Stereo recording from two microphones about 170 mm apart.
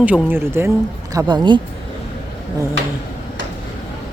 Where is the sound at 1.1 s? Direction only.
25° right (ahead or behind).